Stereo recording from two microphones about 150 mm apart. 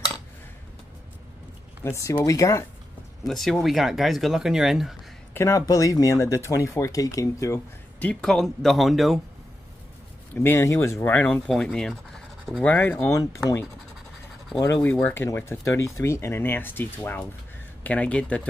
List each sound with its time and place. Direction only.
1.8 s speech: 20° left (ahead or behind)
3.3 s speech: centre (ahead or behind)
5.3 s speech: 20° left (ahead or behind)
8.0 s speech: 5° left (ahead or behind)
10.3 s speech: 15° left (ahead or behind)
14.6 s speech: 15° left (ahead or behind)